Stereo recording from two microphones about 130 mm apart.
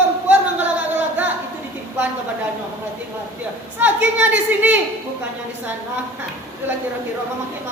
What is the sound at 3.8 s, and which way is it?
A woman's voice, 15° right (ahead or behind).